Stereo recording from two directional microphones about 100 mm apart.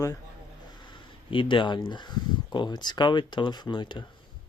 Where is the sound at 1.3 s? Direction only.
55° left (ahead or behind).